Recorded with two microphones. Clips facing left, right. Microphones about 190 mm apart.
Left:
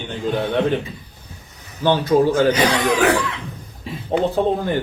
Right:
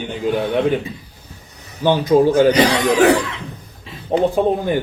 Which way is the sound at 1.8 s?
15° right (ahead or behind).